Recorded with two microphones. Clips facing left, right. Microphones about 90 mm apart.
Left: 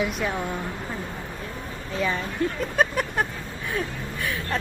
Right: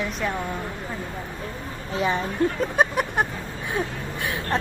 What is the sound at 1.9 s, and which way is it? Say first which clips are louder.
Speech: right 3 dB; 25° right (ahead or behind).